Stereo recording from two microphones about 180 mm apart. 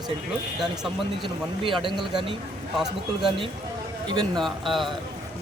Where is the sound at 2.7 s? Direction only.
Centre (ahead or behind).